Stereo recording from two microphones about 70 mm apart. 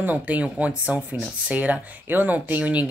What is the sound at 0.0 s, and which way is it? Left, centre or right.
Speech, right.